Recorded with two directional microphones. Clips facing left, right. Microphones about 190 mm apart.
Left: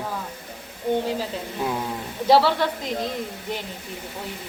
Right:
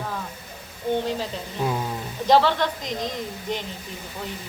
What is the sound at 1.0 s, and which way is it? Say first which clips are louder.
Speech: left 1 dB; 5° left (ahead or behind).